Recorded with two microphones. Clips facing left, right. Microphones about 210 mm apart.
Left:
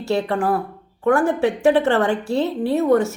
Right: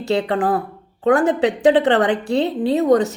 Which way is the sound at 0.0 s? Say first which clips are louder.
Right 2 dB; 20° right (ahead or behind).